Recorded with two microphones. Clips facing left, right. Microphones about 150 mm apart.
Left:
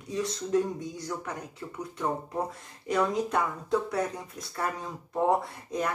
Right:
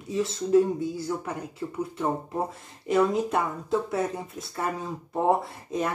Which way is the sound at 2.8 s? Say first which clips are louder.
Right 4 dB; 5° right (ahead or behind).